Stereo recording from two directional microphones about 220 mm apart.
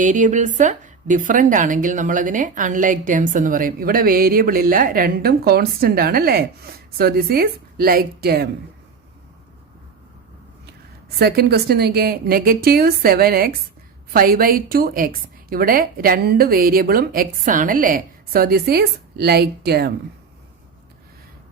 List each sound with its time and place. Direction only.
0.0 s a woman's voice: 35° right (ahead or behind)
11.2 s a woman's voice: 45° right (ahead or behind)